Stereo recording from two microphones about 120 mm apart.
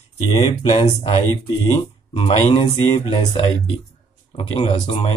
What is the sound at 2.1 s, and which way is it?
Speech, 50° left (ahead or behind).